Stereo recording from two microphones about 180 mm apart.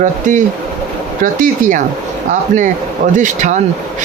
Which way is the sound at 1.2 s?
45° right (ahead or behind).